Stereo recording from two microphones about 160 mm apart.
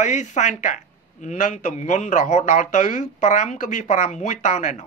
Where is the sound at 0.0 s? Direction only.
50° left (ahead or behind).